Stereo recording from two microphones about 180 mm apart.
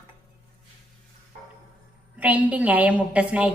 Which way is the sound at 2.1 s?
10° right (ahead or behind).